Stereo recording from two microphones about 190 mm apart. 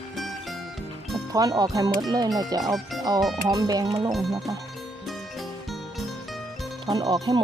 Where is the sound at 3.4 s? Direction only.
20° right (ahead or behind).